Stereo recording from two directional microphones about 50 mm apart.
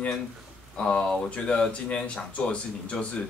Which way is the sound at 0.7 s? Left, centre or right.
Left.